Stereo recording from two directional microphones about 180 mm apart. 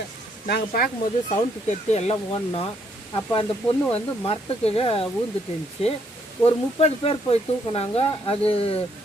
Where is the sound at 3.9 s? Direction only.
30° left (ahead or behind).